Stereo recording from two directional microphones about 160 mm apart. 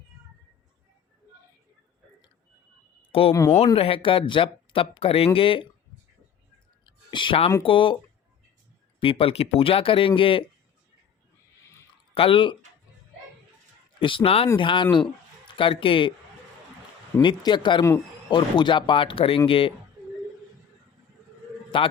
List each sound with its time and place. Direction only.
3.1 s speech: 35° left (ahead or behind)
3.3 s speech: 15° left (ahead or behind)
3.8 s speech: 35° left (ahead or behind)
6.8 s a sound: 30° left (ahead or behind)
7.6 s speech: 35° left (ahead or behind)
9.0 s speech: 35° left (ahead or behind)
12.1 s speech: 35° left (ahead or behind)
14.0 s speech: 30° left (ahead or behind)
17.2 s speech: 30° left (ahead or behind)
21.7 s speech: 30° left (ahead or behind)